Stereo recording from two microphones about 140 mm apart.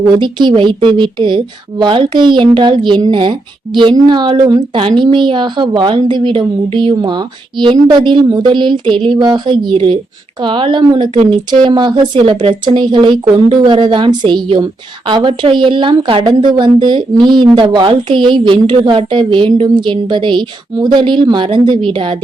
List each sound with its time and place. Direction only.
0.2 s speech: 35° right (ahead or behind)
4.8 s a woman's voice: 45° right (ahead or behind)